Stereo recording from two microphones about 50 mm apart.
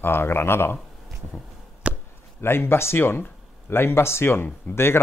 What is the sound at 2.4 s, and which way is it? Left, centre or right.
Speech, left.